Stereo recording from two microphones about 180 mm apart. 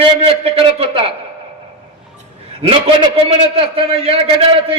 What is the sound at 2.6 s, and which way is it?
A man's voice, 30° right (ahead or behind).